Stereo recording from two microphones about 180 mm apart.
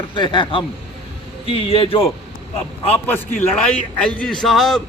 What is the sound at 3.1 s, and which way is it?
A man's voice, 10° left (ahead or behind).